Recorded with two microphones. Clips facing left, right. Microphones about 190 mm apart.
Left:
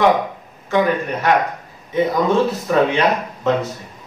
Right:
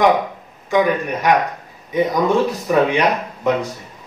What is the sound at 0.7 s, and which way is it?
A man's voice, 15° right (ahead or behind).